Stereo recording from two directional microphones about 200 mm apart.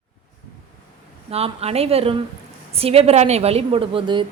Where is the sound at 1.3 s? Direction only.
30° right (ahead or behind).